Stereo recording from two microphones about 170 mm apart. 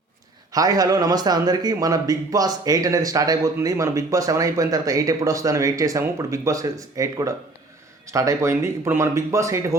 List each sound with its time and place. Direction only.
0.5 s a man's voice: 20° right (ahead or behind)